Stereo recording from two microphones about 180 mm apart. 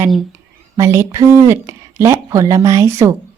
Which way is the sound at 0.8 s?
15° right (ahead or behind).